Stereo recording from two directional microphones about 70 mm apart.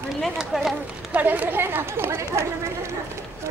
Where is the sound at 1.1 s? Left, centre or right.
Right.